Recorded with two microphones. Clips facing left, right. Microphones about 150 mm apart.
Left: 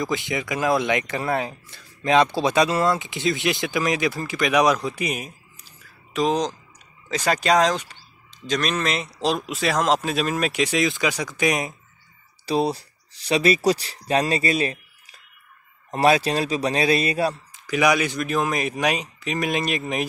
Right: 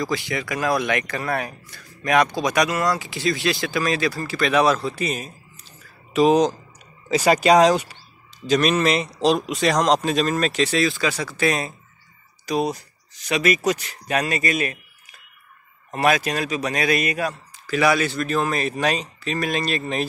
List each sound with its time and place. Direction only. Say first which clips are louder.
0.0 s speech: even; 20° left (ahead or behind)
6.1 s speech: right 6 dB; 10° right (ahead or behind); by 11.7 s 15° left (ahead or behind)
12.4 s a man's voice: left 1 dB; 30° left (ahead or behind)
17.6 s speech: right 1 dB; 15° left (ahead or behind)